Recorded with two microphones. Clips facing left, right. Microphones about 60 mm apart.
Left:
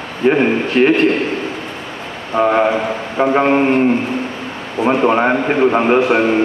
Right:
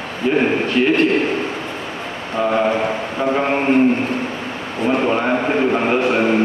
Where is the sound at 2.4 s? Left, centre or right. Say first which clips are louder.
Left 4 dB; left.